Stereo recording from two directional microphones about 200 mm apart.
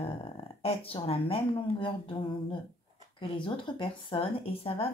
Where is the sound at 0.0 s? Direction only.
30° left (ahead or behind).